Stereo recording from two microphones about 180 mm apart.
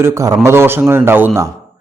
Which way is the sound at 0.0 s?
15° right (ahead or behind).